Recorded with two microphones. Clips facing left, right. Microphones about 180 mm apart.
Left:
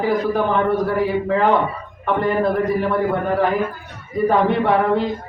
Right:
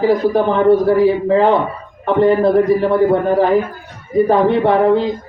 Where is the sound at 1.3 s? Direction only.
30° right (ahead or behind).